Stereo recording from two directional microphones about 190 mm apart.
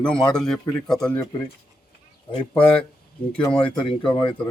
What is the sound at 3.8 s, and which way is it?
Speech, 25° left (ahead or behind).